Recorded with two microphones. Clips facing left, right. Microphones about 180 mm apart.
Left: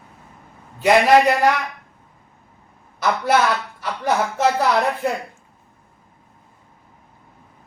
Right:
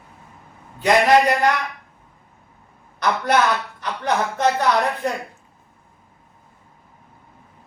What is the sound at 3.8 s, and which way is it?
Music, 5° left (ahead or behind).